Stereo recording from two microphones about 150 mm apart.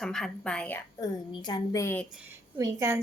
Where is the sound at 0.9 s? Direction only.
30° left (ahead or behind).